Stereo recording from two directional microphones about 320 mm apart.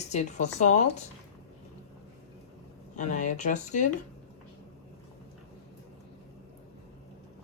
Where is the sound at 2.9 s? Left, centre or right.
Left.